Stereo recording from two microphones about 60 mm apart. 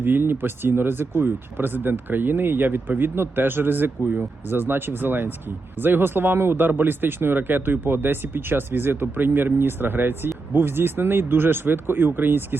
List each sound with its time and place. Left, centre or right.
0.0 s speech: right